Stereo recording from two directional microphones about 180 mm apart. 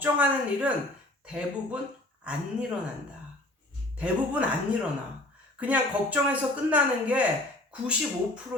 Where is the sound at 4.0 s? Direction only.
5° right (ahead or behind).